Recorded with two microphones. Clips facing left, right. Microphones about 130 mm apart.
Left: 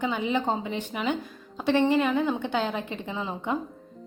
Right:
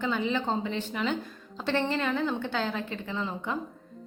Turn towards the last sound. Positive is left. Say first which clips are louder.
# left 3 dB
turn(degrees=15)  # may be behind; listen again after turning